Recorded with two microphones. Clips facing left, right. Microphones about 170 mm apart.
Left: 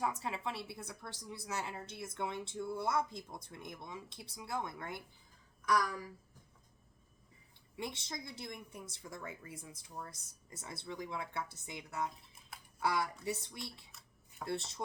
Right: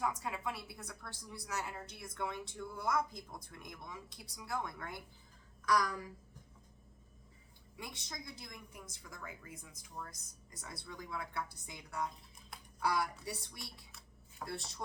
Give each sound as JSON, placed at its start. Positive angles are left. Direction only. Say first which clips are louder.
{"t": 0.0, "sound": "a woman's voice", "louder": "even", "side_deg": 25}
{"t": 7.8, "sound": "a woman's voice", "louder": "left 5 dB", "side_deg": 25}